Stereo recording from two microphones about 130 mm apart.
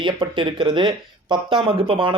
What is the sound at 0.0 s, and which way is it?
Speech, 40° right (ahead or behind).